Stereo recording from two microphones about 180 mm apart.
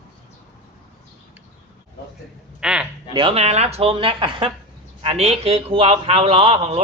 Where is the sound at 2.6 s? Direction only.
5° right (ahead or behind).